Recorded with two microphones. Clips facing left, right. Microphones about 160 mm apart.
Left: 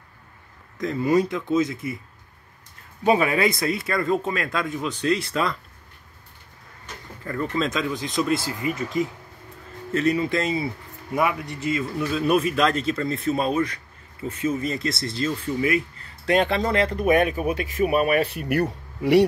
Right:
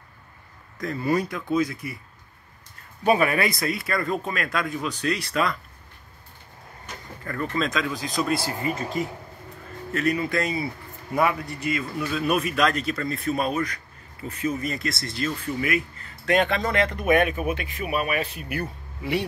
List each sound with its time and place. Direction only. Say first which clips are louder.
0.7 s speech: left 4 dB; 20° left (ahead or behind)
3.0 s speech: left 1 dB; 20° left (ahead or behind)
7.2 s speech: left 2 dB; 25° left (ahead or behind)
8.5 s speech: left 1 dB; 35° right (ahead or behind)
9.9 s speech: left 2 dB; 25° left (ahead or behind); by 19.2 s 70° left (ahead or behind)